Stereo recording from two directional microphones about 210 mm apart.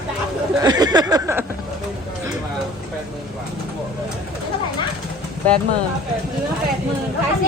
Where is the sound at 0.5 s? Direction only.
20° right (ahead or behind).